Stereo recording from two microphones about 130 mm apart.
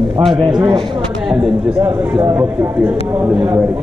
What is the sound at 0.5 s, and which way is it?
Speech, 35° right (ahead or behind).